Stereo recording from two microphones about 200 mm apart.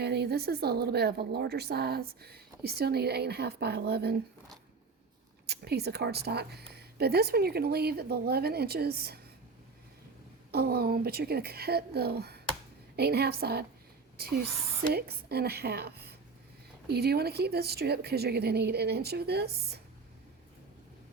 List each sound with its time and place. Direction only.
0.0 s a woman's voice: 55° right (ahead or behind)
5.5 s a woman's voice: 55° right (ahead or behind)
10.5 s a woman's voice: 50° right (ahead or behind)
14.8 s a woman's voice: 50° right (ahead or behind)